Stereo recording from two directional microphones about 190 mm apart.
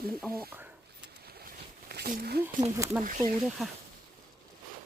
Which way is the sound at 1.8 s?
50° right (ahead or behind).